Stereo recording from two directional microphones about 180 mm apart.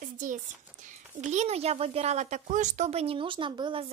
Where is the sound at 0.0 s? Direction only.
45° right (ahead or behind).